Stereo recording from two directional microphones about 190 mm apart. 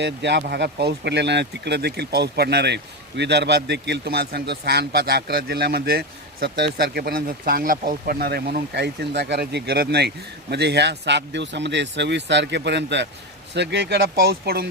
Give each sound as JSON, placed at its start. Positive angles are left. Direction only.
{"t": 0.0, "sound": "speech", "side_deg": -60}